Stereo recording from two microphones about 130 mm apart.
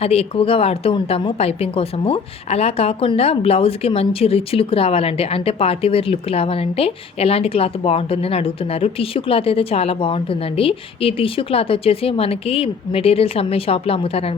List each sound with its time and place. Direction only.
0.0 s a woman's voice: 50° left (ahead or behind)